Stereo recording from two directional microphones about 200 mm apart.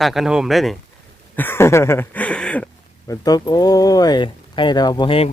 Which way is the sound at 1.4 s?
10° left (ahead or behind).